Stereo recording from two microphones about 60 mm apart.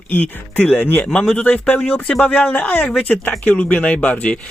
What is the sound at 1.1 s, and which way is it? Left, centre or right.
Speech, centre.